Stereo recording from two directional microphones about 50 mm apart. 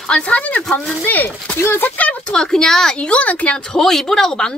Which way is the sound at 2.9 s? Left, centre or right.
Left.